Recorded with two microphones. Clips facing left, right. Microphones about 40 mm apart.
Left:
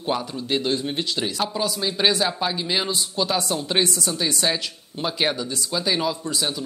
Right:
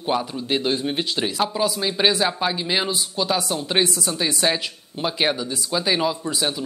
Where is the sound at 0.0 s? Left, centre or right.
Centre.